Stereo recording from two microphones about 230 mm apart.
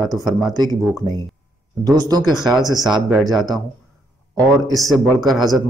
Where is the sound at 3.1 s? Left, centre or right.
Centre.